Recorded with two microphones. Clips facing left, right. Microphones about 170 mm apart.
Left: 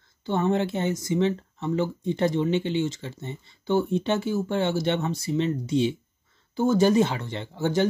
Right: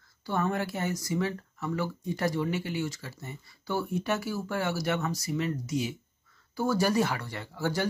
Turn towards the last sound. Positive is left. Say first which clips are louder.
# left 6 dB
turn(degrees=25)  # may be behind; listen again after turning